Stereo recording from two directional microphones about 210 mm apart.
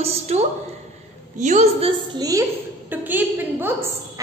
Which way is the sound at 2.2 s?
15° right (ahead or behind).